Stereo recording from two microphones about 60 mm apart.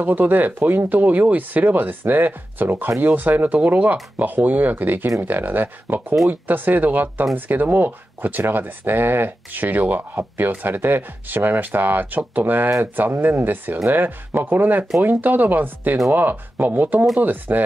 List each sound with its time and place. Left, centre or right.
0.0 s speech: right